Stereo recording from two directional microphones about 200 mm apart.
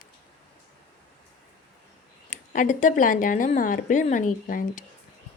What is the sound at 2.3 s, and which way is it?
A woman's voice, 40° left (ahead or behind).